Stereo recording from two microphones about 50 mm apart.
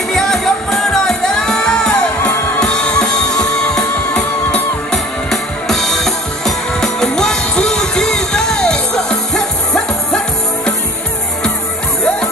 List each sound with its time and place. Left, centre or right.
0.1 s music: centre